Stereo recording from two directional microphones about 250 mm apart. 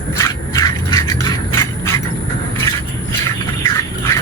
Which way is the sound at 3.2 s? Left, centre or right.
Centre.